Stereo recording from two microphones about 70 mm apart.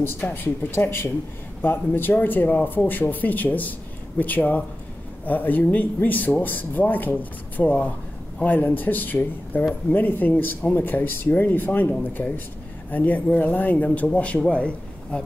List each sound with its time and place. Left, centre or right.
0.0 s a man's voice: left; by 15.2 s centre